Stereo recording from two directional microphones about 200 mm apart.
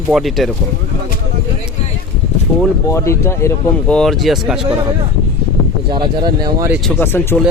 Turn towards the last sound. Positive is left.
turn(degrees=10)  # may be behind; listen again after turning